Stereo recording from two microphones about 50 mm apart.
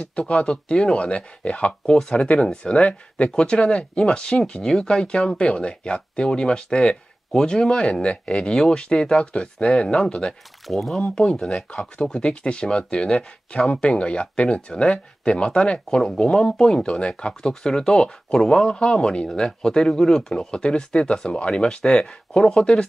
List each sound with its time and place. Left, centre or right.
0.0 s speech: left
10.7 s speech: centre